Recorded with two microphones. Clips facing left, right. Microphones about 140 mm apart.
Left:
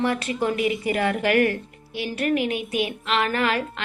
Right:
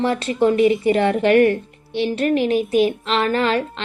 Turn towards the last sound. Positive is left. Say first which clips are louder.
# right 5 dB
turn(degrees=-30)  # may be behind; listen again after turning